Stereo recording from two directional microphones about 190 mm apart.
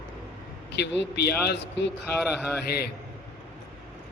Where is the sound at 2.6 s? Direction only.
55° left (ahead or behind).